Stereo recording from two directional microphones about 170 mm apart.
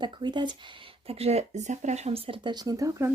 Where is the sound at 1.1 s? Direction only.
35° right (ahead or behind); by 3.0 s 20° right (ahead or behind).